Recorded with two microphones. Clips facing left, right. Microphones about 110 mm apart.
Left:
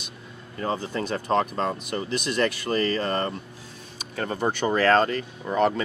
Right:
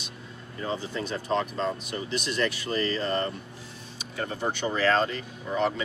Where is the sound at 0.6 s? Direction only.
55° left (ahead or behind).